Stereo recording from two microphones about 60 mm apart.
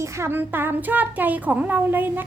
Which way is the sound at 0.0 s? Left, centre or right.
Right.